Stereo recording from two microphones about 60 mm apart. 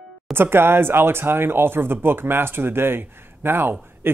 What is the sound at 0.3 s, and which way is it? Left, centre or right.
Speech, right.